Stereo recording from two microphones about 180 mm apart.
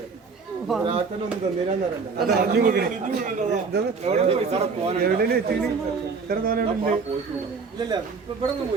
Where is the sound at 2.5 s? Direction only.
55° right (ahead or behind).